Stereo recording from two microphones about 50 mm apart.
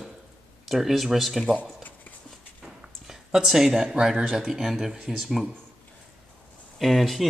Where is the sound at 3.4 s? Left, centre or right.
Centre.